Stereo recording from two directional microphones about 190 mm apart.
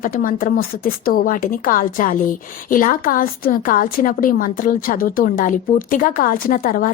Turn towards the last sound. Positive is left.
turn(degrees=45)  # may be behind; listen again after turning